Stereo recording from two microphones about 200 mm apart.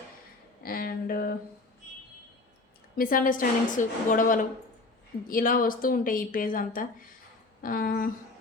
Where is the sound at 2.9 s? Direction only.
45° left (ahead or behind).